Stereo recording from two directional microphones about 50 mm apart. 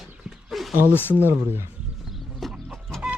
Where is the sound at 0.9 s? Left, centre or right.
Left.